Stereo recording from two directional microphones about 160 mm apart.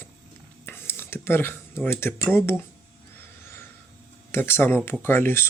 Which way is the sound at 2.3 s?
15° left (ahead or behind).